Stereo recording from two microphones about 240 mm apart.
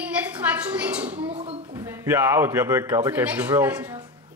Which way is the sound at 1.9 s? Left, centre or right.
Centre.